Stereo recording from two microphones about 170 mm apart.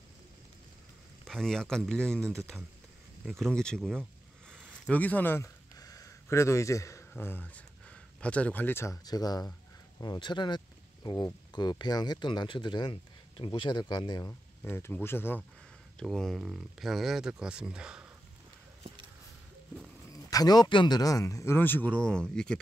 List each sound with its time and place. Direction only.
1.2 s speech: 5° left (ahead or behind); by 14.3 s 25° left (ahead or behind)
14.6 s speech: 10° left (ahead or behind)
16.0 s speech: centre (ahead or behind)
20.1 s speech: 20° left (ahead or behind); by 22.6 s 5° left (ahead or behind)